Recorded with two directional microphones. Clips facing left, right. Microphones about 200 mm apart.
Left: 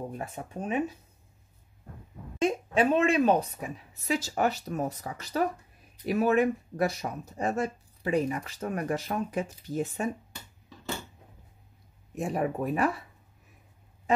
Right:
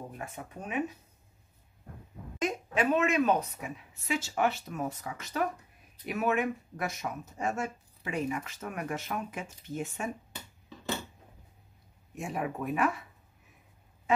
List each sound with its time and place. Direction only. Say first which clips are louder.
0.2 s speech: left 5 dB; 30° left (ahead or behind)
2.3 s speech: left 5 dB; 30° left (ahead or behind)
12.2 s speech: left 5 dB; 40° left (ahead or behind)